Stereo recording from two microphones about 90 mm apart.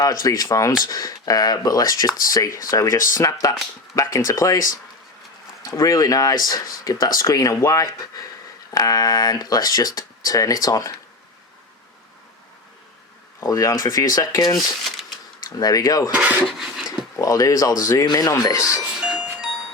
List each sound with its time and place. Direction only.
0.0 s speech: 40° left (ahead or behind)
5.7 s speech: 40° left (ahead or behind)
13.5 s speech: 40° left (ahead or behind)
16.5 s a sound: 5° right (ahead or behind)
17.2 s speech: 40° left (ahead or behind)
18.9 s music: 10° right (ahead or behind)